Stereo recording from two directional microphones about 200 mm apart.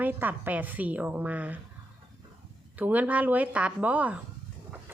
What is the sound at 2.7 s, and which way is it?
A woman's voice, 10° right (ahead or behind).